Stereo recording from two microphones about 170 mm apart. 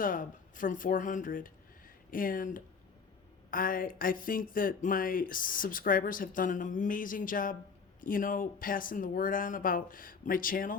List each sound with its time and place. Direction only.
0.0 s speech: 55° left (ahead or behind)